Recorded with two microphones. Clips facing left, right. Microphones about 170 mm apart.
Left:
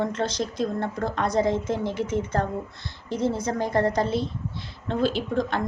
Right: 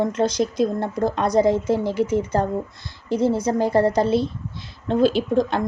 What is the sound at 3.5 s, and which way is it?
Speech, 10° right (ahead or behind).